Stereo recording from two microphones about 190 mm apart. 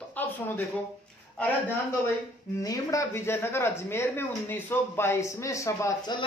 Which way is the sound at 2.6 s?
15° left (ahead or behind).